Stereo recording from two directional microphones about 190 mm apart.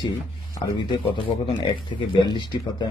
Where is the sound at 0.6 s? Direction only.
25° left (ahead or behind).